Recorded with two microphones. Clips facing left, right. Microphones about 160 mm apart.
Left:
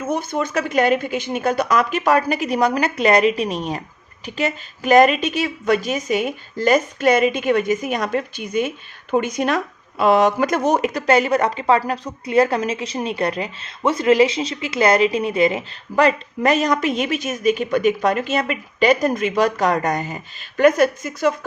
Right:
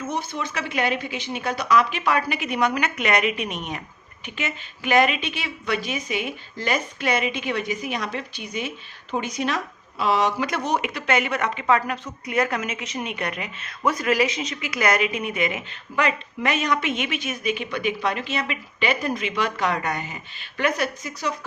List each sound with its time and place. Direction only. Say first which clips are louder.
0.0 s a woman's voice: left 6 dB; 50° left (ahead or behind)